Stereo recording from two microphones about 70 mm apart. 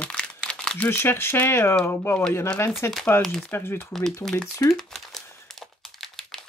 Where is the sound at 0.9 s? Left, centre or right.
Left.